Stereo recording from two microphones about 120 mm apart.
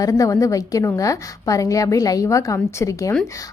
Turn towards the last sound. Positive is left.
turn(degrees=25)  # may be behind; listen again after turning